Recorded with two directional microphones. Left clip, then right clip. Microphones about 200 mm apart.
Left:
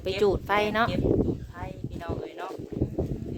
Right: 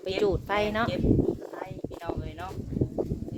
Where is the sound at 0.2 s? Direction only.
20° left (ahead or behind).